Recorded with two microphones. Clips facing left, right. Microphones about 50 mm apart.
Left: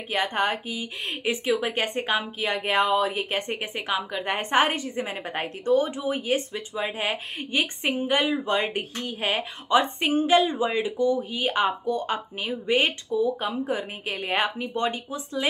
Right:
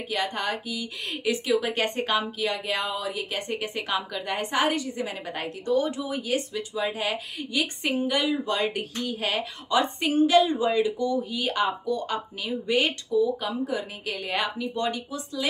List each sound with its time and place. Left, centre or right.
0.1 s a woman's voice: left